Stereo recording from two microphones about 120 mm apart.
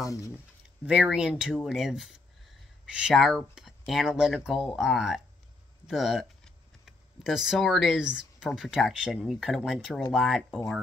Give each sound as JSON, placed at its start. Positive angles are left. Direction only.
{"t": 0.0, "sound": "speech", "side_deg": 25}
{"t": 0.8, "sound": "speech", "side_deg": -10}